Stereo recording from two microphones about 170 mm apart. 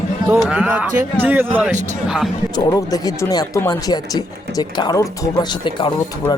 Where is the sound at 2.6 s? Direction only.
20° left (ahead or behind).